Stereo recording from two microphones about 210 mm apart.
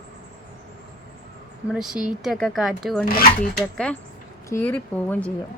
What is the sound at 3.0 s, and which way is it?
Speech, 45° left (ahead or behind).